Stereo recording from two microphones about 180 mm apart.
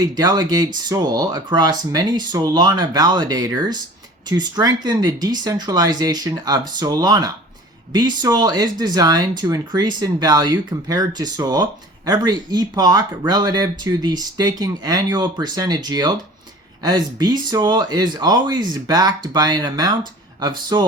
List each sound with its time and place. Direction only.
0.2 s speech: 20° right (ahead or behind)